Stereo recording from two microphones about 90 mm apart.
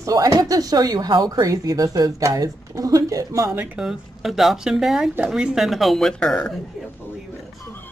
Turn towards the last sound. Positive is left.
turn(degrees=10)  # may be behind; listen again after turning